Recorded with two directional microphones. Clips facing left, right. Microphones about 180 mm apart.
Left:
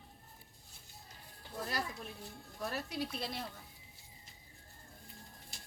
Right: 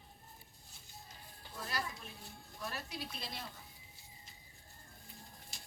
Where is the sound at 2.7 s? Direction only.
60° left (ahead or behind).